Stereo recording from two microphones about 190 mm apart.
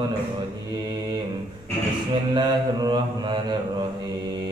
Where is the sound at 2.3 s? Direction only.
25° right (ahead or behind).